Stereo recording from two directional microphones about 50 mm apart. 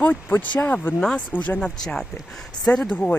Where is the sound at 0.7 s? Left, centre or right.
Left.